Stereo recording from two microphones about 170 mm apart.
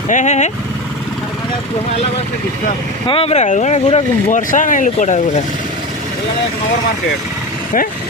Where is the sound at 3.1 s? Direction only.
35° left (ahead or behind).